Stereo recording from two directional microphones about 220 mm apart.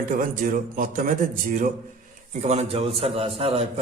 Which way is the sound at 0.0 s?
35° right (ahead or behind).